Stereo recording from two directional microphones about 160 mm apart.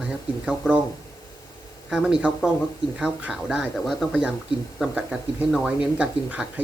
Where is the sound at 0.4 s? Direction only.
5° right (ahead or behind).